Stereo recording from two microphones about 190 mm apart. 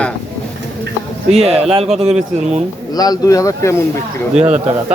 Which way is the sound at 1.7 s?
30° right (ahead or behind).